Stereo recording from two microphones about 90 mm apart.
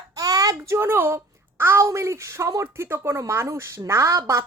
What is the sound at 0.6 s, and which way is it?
Speech, 30° right (ahead or behind).